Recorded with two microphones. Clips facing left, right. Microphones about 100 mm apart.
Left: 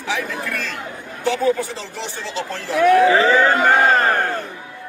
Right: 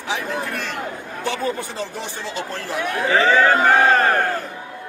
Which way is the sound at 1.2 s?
20° left (ahead or behind).